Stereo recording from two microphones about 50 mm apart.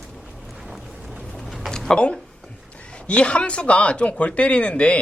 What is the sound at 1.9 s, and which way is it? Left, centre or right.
Speech, left.